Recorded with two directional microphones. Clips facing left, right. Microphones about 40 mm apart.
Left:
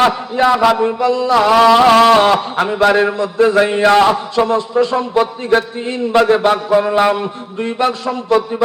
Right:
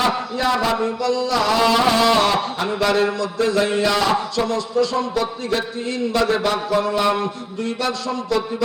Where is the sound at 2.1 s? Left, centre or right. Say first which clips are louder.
Left 6 dB; left.